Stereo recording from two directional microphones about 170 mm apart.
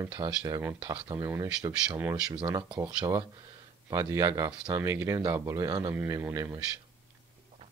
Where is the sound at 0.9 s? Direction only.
30° right (ahead or behind).